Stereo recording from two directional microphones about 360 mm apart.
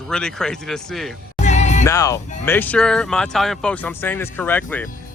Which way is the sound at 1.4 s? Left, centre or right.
Centre.